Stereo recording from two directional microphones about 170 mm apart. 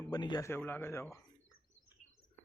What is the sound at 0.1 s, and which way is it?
Speech, 25° left (ahead or behind).